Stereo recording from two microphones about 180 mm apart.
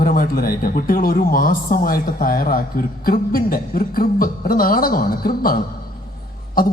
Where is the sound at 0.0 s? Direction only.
50° left (ahead or behind).